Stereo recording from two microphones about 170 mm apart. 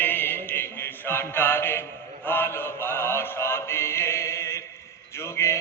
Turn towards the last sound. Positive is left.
turn(degrees=15)  # may be behind; listen again after turning